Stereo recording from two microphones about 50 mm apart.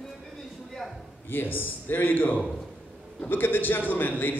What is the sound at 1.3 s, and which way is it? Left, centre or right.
A man's voice, left.